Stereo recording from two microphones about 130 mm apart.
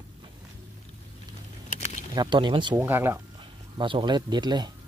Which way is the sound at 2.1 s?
35° right (ahead or behind).